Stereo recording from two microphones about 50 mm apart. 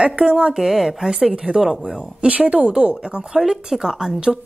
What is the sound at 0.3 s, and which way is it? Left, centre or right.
Speech, centre.